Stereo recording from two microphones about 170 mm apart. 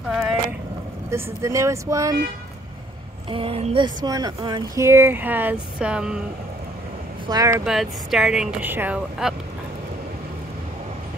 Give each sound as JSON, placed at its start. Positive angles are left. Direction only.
{"t": 1.1, "sound": "speech", "side_deg": -15}
{"t": 3.3, "sound": "speech", "side_deg": -30}
{"t": 7.2, "sound": "speech", "side_deg": -20}
{"t": 7.6, "sound": "speech", "side_deg": 0}